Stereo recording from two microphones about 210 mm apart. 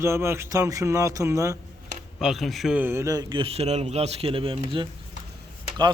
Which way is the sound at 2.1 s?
Centre (ahead or behind).